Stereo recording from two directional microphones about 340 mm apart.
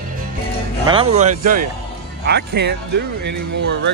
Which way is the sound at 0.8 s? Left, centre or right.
Centre.